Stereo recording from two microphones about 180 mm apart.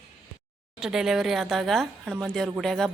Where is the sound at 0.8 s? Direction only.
Centre (ahead or behind).